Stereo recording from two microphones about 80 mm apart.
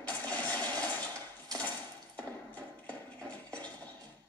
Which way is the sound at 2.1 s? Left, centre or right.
Centre.